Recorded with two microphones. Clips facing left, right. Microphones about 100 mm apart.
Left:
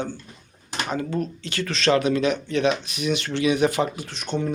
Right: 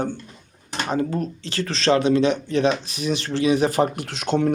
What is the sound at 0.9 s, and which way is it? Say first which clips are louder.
Speech: right 3 dB; 35° right (ahead or behind).